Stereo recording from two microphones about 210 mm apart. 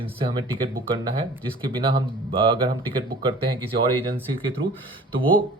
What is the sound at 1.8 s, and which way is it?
Speech, 25° right (ahead or behind).